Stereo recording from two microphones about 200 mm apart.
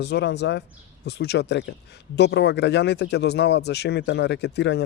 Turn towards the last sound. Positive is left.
turn(degrees=60)  # may be behind; listen again after turning